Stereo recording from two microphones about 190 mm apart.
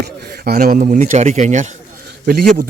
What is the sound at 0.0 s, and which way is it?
Speech, 55° right (ahead or behind).